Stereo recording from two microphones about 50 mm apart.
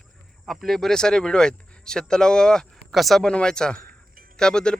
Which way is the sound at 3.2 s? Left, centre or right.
Centre.